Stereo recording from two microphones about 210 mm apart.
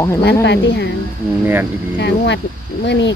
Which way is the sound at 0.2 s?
55° left (ahead or behind).